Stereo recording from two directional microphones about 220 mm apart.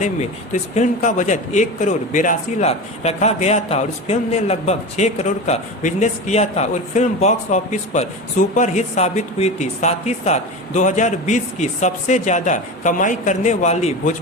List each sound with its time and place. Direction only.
0.0 s a man's voice: 30° left (ahead or behind)